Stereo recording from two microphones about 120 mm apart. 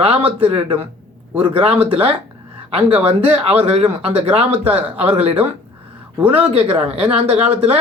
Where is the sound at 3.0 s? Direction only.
50° right (ahead or behind).